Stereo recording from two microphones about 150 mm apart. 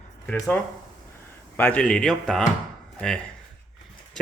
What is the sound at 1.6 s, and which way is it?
Speech, 10° left (ahead or behind).